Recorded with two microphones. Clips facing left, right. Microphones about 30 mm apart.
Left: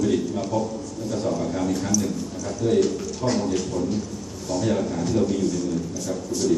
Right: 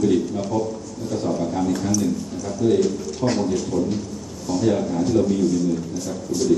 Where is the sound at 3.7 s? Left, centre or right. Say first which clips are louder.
Right 4 dB; right.